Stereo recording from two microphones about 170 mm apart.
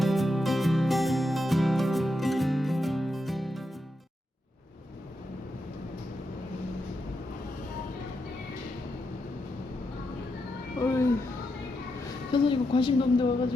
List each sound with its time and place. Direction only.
0.0 s music: centre (ahead or behind)
10.8 s cat: 15° left (ahead or behind)
12.3 s a woman's voice: 30° left (ahead or behind)